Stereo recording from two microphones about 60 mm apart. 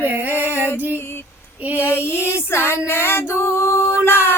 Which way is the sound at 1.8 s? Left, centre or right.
Left.